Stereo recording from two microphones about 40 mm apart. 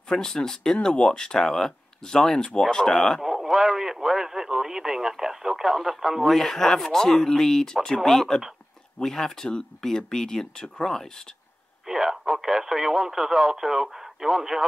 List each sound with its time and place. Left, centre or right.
0.1 s speech: centre
3.2 s speech: centre
6.2 s speech: centre
11.8 s speech: centre